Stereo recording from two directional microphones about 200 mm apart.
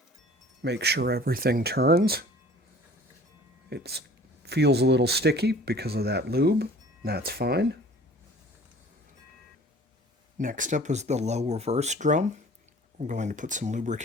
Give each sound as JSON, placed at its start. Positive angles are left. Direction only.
{"t": 0.6, "sound": "speech", "side_deg": -55}
{"t": 3.7, "sound": "speech", "side_deg": -55}
{"t": 10.3, "sound": "speech", "side_deg": -40}